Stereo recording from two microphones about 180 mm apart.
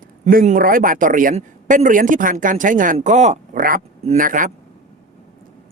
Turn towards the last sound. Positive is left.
turn(degrees=-50)  # may be behind; listen again after turning